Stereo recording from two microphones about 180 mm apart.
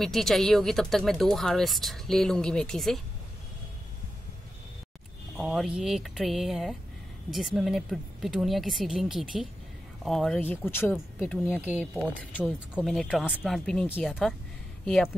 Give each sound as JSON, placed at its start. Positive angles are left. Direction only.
{"t": 0.0, "sound": "speech", "side_deg": 0}
{"t": 5.4, "sound": "speech", "side_deg": -5}
{"t": 11.5, "sound": "speech", "side_deg": -10}